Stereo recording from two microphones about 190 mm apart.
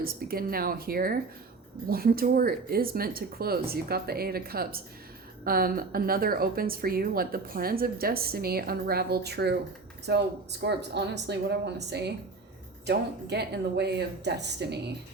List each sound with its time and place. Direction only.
0.0 s speech: 50° right (ahead or behind)
13.3 s speech: 60° right (ahead or behind)